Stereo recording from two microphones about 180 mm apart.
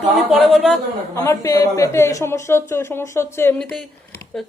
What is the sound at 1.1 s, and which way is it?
A woman's voice, 15° left (ahead or behind).